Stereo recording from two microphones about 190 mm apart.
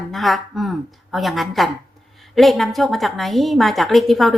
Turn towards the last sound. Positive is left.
turn(degrees=0)  # may be behind; listen again after turning